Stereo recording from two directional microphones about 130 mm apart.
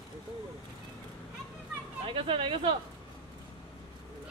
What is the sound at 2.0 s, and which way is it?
Speech, 45° right (ahead or behind).